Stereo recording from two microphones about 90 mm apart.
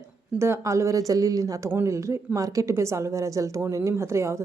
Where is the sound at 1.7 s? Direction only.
30° right (ahead or behind).